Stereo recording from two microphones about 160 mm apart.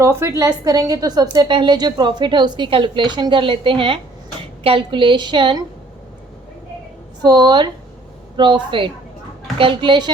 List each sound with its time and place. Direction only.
0.0 s a woman's voice: 15° right (ahead or behind)
7.2 s a woman's voice: 25° right (ahead or behind)